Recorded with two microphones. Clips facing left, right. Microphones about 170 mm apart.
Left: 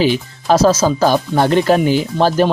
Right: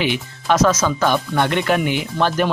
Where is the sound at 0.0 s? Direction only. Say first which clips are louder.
Left 6 dB; 35° left (ahead or behind).